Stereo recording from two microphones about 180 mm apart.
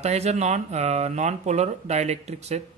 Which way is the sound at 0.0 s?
35° right (ahead or behind).